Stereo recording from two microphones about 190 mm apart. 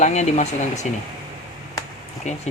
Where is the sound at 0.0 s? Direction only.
40° left (ahead or behind).